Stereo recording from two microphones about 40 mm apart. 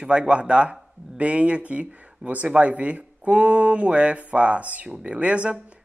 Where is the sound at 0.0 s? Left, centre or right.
Right.